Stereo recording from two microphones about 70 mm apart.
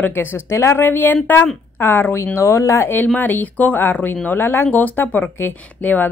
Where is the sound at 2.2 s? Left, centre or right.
Left.